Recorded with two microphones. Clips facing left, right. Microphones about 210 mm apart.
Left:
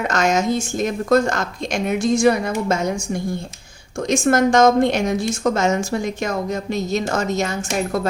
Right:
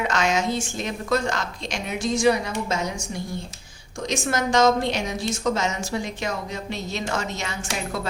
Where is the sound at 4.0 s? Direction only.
50° left (ahead or behind).